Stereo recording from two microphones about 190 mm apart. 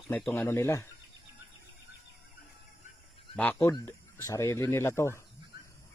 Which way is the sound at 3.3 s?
10° left (ahead or behind).